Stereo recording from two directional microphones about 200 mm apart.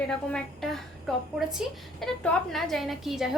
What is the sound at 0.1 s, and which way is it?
A woman's voice, 5° left (ahead or behind).